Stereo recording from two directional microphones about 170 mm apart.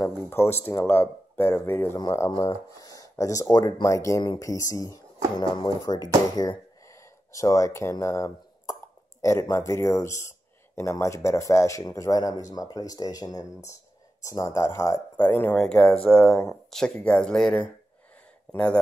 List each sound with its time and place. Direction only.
0.0 s speech: 15° left (ahead or behind)